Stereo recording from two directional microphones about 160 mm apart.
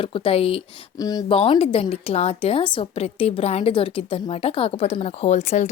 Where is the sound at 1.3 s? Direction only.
35° left (ahead or behind).